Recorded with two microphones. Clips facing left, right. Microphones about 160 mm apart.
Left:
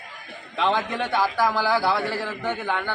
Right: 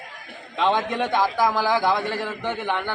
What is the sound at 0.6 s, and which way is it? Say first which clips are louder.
A man's voice: right 2 dB; 15° right (ahead or behind).